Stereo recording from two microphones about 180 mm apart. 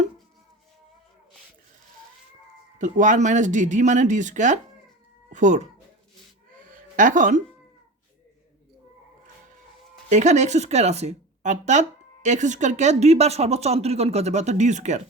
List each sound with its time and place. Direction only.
2.7 s speech: 45° right (ahead or behind)
6.6 s a sound: 45° right (ahead or behind)
10.1 s speech: 40° right (ahead or behind)